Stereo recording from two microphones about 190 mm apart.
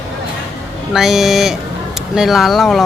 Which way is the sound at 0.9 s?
Centre (ahead or behind).